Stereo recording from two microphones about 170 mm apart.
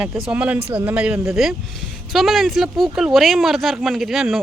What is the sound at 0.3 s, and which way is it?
Speech, 10° right (ahead or behind).